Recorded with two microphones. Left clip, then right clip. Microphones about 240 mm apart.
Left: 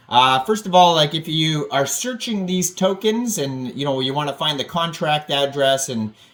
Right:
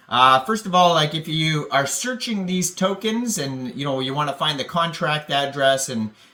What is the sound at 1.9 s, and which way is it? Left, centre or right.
Speech, right.